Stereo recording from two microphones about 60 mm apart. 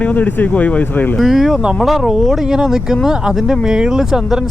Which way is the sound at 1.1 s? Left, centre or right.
Centre.